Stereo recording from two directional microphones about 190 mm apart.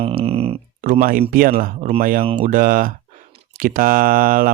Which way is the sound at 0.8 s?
45° right (ahead or behind).